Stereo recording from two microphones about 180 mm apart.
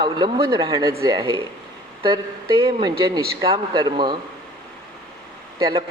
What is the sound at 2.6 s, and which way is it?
Speech, 25° right (ahead or behind).